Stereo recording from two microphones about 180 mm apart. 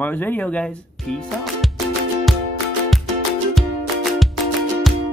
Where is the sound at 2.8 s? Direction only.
Centre (ahead or behind).